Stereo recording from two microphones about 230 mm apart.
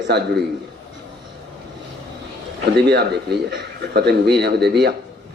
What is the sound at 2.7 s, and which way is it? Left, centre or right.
A man's voice, right.